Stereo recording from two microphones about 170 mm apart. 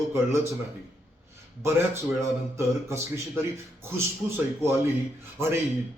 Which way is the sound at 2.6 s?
15° right (ahead or behind).